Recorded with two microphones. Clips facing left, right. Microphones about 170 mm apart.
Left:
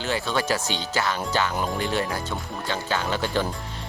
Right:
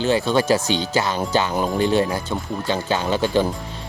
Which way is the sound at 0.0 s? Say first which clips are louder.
Right 7 dB; 20° right (ahead or behind).